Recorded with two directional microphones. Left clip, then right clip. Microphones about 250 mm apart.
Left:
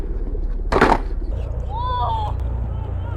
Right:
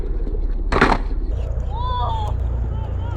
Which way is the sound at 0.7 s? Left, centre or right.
Left.